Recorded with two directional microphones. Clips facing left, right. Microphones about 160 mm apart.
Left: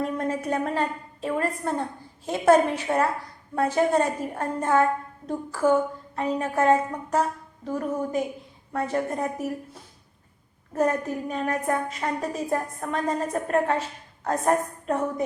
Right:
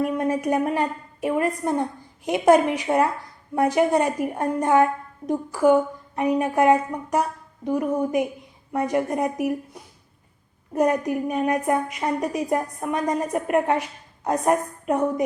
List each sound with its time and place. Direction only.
0.0 s a woman's voice: 10° right (ahead or behind)